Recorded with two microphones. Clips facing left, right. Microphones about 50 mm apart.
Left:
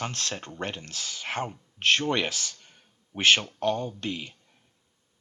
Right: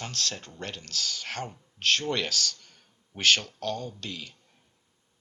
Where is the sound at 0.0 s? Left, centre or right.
Left.